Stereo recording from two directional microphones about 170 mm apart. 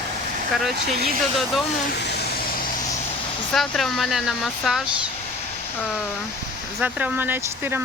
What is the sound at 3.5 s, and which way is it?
Speech, centre (ahead or behind).